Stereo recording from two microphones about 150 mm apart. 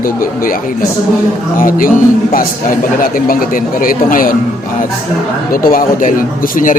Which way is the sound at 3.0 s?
65° left (ahead or behind).